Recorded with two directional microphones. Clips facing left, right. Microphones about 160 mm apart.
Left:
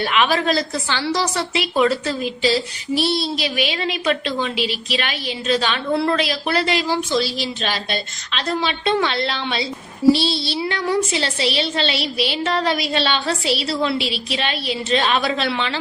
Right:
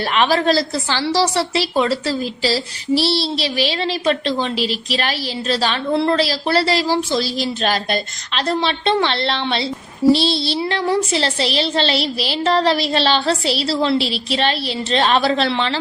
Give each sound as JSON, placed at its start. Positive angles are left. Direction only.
{"t": 0.0, "sound": "a woman's voice", "side_deg": -35}
{"t": 8.4, "sound": "a woman's voice", "side_deg": -35}